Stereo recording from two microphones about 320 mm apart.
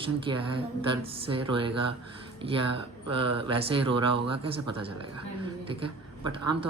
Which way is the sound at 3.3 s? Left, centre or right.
Centre.